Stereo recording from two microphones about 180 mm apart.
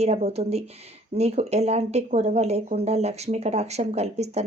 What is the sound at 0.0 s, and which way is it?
A woman's voice, 35° right (ahead or behind).